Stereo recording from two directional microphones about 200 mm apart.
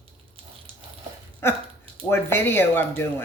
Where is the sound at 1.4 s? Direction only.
10° left (ahead or behind).